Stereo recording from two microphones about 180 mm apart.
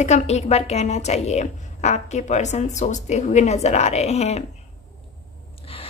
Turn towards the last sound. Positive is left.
turn(degrees=35)  # may be behind; listen again after turning